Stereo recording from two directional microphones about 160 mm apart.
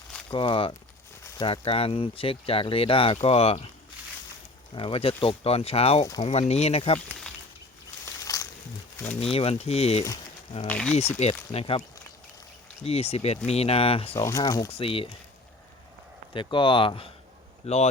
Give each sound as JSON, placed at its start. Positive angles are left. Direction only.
{"t": 0.3, "sound": "speech", "side_deg": 30}
{"t": 4.7, "sound": "speech", "side_deg": 35}
{"t": 8.2, "sound": "a sound", "side_deg": 20}
{"t": 9.0, "sound": "speech", "side_deg": 10}
{"t": 9.3, "sound": "speech", "side_deg": 40}
{"t": 10.7, "sound": "speech", "side_deg": 5}
{"t": 11.2, "sound": "speech", "side_deg": 40}
{"t": 12.8, "sound": "speech", "side_deg": 40}
{"t": 14.2, "sound": "speech", "side_deg": 20}
{"t": 14.7, "sound": "speech", "side_deg": 35}
{"t": 16.3, "sound": "speech", "side_deg": 30}